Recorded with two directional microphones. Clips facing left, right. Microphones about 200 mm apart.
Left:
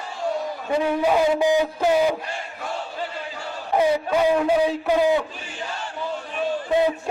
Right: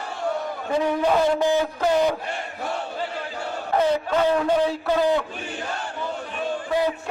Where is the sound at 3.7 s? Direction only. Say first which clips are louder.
Left 1 dB; 10° left (ahead or behind).